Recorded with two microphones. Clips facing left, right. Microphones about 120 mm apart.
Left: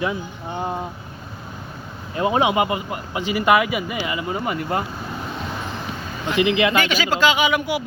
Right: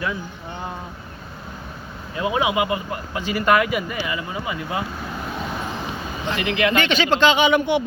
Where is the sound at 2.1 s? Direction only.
35° left (ahead or behind).